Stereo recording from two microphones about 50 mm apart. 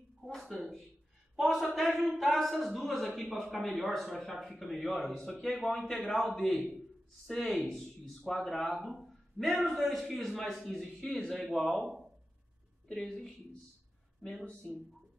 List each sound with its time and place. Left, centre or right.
0.2 s a sound: centre
1.3 s speech: centre
11.0 s speech: left
11.2 s speech: centre
12.8 s speech: centre
14.4 s speech: left